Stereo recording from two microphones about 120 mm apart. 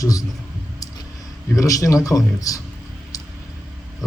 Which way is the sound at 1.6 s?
30° left (ahead or behind).